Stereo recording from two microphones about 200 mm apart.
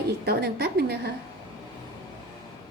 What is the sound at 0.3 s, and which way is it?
Speech, 50° right (ahead or behind).